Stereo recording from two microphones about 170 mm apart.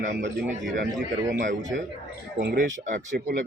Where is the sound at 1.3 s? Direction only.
50° right (ahead or behind).